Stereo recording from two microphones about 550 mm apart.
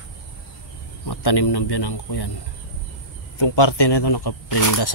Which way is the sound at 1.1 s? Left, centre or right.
Left.